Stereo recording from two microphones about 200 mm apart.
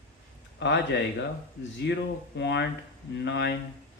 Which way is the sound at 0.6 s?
60° left (ahead or behind).